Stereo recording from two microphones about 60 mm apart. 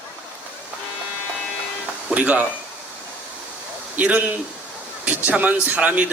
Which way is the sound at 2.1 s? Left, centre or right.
Right.